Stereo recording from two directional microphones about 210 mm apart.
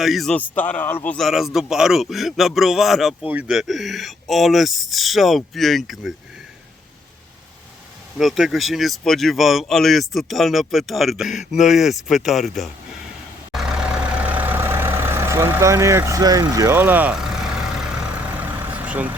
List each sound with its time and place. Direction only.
0.0 s a man's voice: centre (ahead or behind)
8.2 s a man's voice: centre (ahead or behind)
13.5 s vehicle: centre (ahead or behind)
18.3 s vehicle: 5° right (ahead or behind)